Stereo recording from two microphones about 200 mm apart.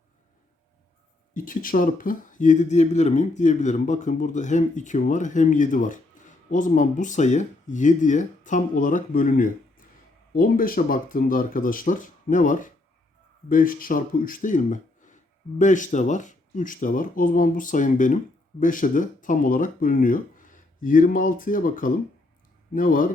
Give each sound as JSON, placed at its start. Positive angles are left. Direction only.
{"t": 1.3, "sound": "speech", "side_deg": 45}